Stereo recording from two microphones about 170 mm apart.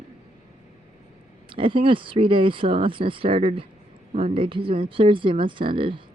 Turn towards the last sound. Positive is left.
turn(degrees=-30)  # may be behind; listen again after turning